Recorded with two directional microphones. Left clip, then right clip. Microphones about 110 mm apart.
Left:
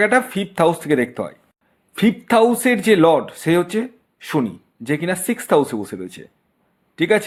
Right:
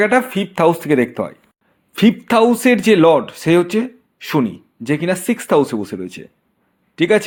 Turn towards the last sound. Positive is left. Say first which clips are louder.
# right 3 dB
turn(degrees=-20)  # may be behind; listen again after turning